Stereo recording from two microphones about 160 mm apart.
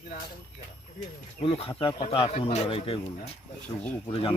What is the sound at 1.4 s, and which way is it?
Speech, 35° left (ahead or behind).